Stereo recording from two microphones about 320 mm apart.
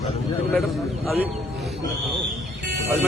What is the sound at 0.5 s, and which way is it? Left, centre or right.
Speech, centre.